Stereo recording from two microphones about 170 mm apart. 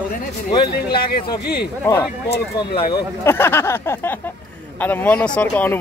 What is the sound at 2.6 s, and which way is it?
Speech, 35° left (ahead or behind).